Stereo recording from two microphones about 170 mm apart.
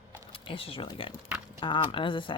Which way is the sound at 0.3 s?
30° left (ahead or behind).